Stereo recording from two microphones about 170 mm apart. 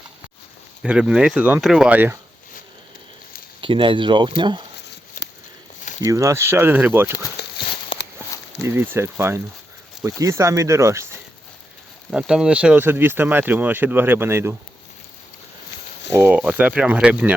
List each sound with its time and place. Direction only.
0.8 s speech: 5° right (ahead or behind)
3.6 s speech: 30° right (ahead or behind)
6.0 s speech: 20° right (ahead or behind)
7.4 s clip-clop: 70° left (ahead or behind)
7.9 s a sound: 30° left (ahead or behind)
8.6 s speech: 15° right (ahead or behind)
12.1 s speech: 5° right (ahead or behind)
16.1 s speech: 10° right (ahead or behind)